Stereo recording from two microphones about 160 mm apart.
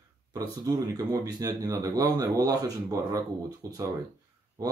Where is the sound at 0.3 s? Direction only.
20° right (ahead or behind).